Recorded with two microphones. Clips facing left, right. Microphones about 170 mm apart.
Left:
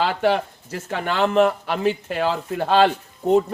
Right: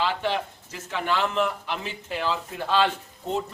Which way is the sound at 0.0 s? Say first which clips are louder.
Left 6 dB; 50° left (ahead or behind).